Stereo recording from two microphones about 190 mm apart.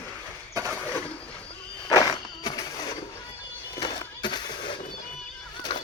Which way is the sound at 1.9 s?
20° left (ahead or behind).